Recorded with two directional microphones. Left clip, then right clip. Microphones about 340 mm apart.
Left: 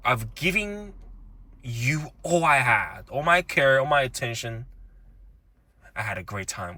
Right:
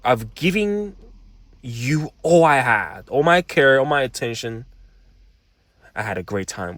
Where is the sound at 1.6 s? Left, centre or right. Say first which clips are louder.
Right 3 dB; centre.